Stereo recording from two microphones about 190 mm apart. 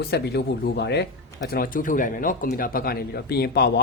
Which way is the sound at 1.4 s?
50° left (ahead or behind).